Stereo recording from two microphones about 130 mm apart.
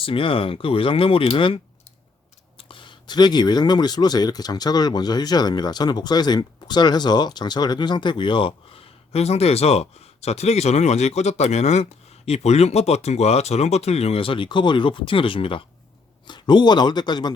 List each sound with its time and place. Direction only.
0.0 s speech: 45° left (ahead or behind)